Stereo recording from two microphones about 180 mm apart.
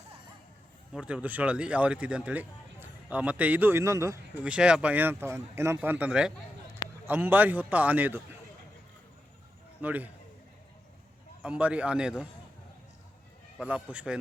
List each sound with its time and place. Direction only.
0.9 s speech: 5° right (ahead or behind)
4.5 s speech: 5° right (ahead or behind)
9.8 s speech: 10° right (ahead or behind)
11.4 s a man's voice: 5° right (ahead or behind)
13.6 s a man's voice: 5° right (ahead or behind)